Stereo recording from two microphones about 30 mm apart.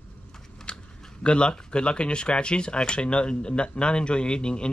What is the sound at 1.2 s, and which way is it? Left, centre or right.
Speech, left.